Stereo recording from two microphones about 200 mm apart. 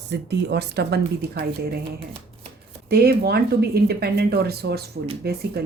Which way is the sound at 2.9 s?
50° right (ahead or behind).